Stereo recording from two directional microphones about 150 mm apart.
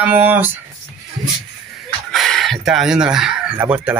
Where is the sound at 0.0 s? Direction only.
15° right (ahead or behind).